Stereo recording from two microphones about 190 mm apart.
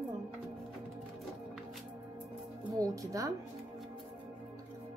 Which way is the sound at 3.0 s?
15° right (ahead or behind).